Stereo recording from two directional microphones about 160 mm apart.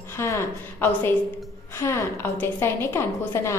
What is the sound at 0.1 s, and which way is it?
A woman's voice, 15° left (ahead or behind).